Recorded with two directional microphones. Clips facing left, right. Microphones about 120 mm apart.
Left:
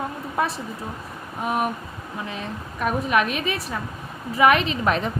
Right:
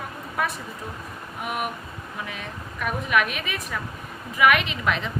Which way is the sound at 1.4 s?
35° left (ahead or behind).